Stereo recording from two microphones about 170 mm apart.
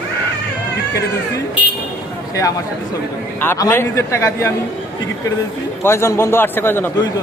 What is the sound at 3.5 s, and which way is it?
Speech, 15° left (ahead or behind).